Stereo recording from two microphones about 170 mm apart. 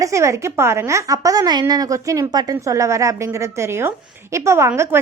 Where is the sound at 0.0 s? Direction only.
15° right (ahead or behind).